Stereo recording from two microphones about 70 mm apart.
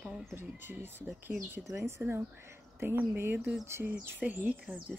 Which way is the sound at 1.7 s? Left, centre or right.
Right.